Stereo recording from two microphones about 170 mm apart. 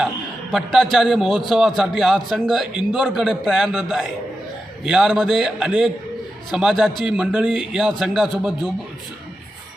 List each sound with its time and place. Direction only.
0.5 s a man's voice: centre (ahead or behind)